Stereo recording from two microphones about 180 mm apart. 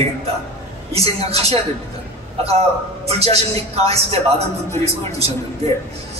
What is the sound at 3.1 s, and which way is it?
Speech, 35° right (ahead or behind).